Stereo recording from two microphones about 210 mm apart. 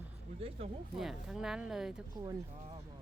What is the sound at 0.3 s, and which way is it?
Speech, 25° right (ahead or behind).